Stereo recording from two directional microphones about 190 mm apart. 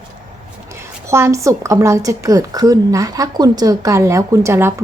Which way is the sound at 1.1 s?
15° right (ahead or behind).